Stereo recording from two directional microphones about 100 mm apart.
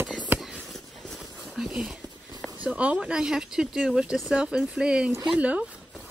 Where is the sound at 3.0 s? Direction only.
10° right (ahead or behind).